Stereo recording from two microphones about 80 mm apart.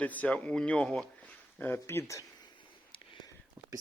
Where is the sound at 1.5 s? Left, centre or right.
Left.